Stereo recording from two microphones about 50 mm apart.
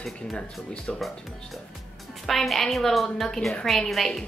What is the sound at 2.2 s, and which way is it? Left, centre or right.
A woman's voice, centre.